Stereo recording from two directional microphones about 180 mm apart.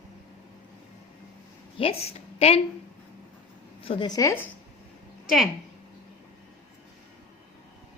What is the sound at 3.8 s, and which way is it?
Speech, 25° left (ahead or behind).